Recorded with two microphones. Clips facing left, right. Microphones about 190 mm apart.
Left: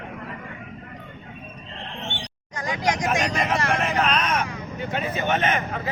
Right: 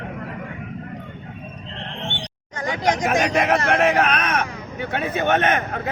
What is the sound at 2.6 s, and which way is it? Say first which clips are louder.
Hubbub: right 3 dB; 25° right (ahead or behind).